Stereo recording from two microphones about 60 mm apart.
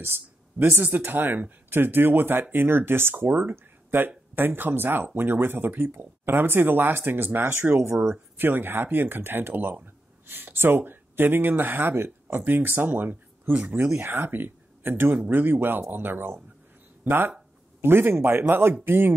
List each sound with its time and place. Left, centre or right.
0.0 s speech: right
3.3 s speech: right
3.5 s a sound: right
4.4 s speech: right
7.7 s speech: right
8.4 s speech: right